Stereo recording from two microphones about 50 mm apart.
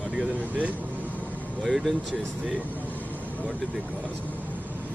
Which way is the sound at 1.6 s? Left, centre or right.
Centre.